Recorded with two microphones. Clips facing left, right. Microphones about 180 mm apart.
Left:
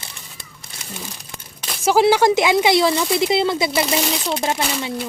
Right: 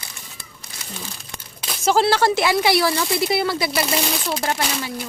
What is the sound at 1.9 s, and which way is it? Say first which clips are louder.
Speech: left 3 dB; 15° left (ahead or behind).